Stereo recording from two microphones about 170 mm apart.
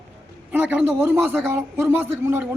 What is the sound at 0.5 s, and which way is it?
A man's voice, 10° right (ahead or behind).